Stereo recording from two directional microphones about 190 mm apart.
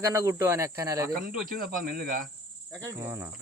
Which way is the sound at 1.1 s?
50° right (ahead or behind).